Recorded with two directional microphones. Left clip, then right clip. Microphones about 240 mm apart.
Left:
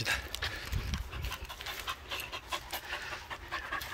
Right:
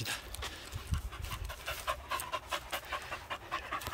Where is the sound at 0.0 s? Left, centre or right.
Centre.